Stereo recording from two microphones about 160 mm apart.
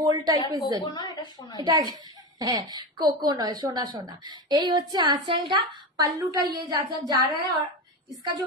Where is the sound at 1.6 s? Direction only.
25° right (ahead or behind).